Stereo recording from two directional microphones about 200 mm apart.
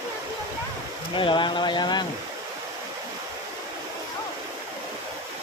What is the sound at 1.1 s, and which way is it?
Speech, 25° left (ahead or behind).